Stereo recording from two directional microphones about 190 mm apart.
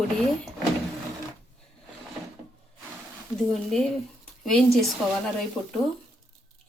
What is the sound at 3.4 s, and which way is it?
Speech, centre (ahead or behind).